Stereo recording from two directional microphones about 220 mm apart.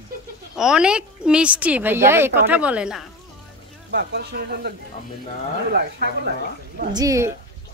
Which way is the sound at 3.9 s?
50° right (ahead or behind).